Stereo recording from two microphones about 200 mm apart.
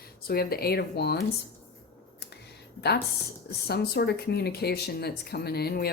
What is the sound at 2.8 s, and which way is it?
A woman's voice, 55° left (ahead or behind).